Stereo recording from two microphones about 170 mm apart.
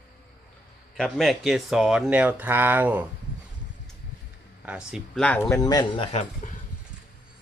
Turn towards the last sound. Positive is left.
turn(degrees=50)  # may be behind; listen again after turning